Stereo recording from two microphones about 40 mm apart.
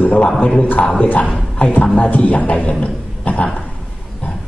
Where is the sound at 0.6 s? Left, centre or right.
Left.